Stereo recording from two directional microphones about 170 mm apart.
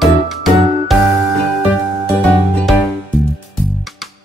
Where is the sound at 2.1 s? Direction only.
Centre (ahead or behind).